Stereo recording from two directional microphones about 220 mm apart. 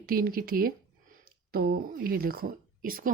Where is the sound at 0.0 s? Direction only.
40° right (ahead or behind).